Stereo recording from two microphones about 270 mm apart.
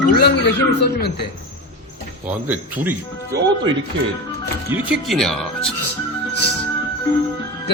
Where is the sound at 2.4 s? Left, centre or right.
Centre.